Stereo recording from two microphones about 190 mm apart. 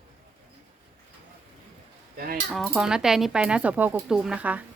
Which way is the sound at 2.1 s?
50° right (ahead or behind).